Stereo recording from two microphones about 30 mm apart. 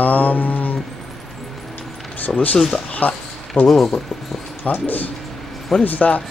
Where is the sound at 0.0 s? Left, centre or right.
Left.